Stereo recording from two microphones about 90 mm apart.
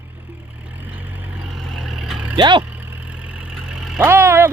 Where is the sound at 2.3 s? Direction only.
60° right (ahead or behind).